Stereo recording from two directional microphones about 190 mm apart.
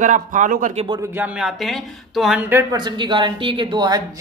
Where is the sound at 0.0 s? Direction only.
40° right (ahead or behind).